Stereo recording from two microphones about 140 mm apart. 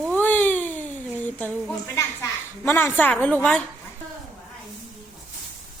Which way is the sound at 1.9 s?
15° left (ahead or behind).